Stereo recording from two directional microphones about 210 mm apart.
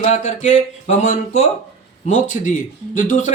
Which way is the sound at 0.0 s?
35° left (ahead or behind).